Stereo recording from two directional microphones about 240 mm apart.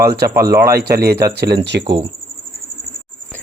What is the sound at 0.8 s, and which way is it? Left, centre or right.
Speech, right.